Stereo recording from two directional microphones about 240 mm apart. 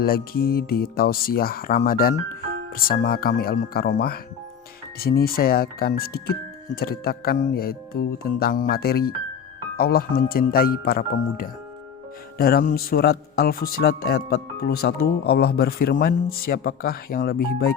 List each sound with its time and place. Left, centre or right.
0.0 s speech: left